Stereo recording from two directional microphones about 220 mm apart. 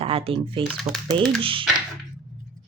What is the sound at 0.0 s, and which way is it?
Speech, 25° right (ahead or behind).